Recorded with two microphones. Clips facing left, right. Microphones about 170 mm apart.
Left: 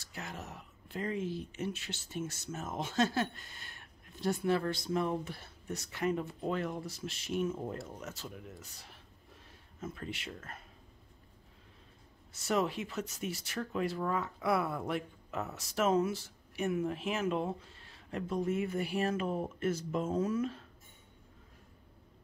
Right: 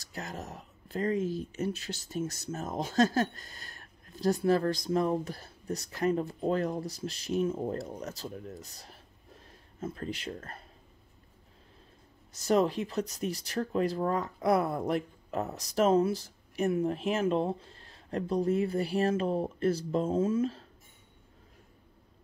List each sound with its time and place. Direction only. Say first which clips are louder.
0.0 s speech: right 4 dB; 40° right (ahead or behind)
12.3 s speech: right 6 dB; 35° right (ahead or behind)